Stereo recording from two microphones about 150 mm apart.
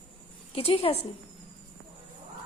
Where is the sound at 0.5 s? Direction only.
40° left (ahead or behind).